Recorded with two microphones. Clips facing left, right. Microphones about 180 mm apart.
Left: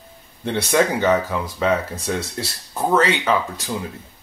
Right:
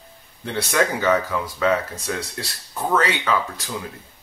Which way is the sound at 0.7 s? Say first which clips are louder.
Left 2 dB; 25° left (ahead or behind).